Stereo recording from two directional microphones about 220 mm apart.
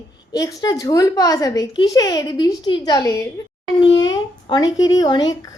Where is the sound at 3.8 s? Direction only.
55° left (ahead or behind).